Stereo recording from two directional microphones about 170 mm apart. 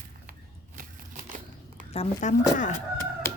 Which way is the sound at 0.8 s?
50° right (ahead or behind).